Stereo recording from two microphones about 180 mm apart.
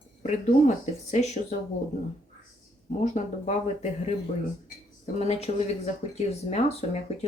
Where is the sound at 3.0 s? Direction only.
40° left (ahead or behind).